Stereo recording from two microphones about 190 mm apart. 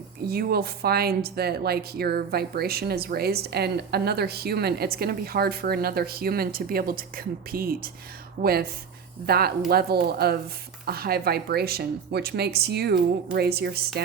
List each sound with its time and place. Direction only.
0.3 s speech: 55° right (ahead or behind)